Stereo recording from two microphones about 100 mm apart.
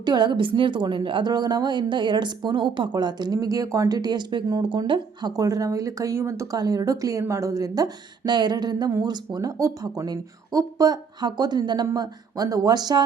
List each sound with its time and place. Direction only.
0.0 s a woman's voice: 45° right (ahead or behind)